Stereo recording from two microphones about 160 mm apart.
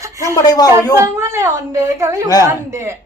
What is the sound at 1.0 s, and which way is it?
A woman's voice, 15° right (ahead or behind).